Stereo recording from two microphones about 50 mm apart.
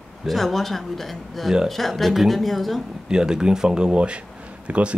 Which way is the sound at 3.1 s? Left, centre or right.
Centre.